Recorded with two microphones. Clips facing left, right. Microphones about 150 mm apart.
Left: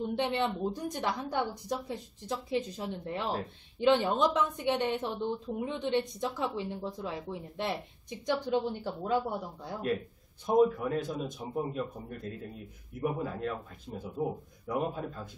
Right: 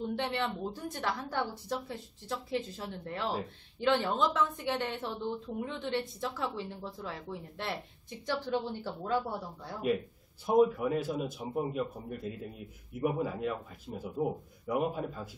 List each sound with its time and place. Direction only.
0.1 s a woman's voice: 20° left (ahead or behind)
10.4 s a man's voice: 5° right (ahead or behind)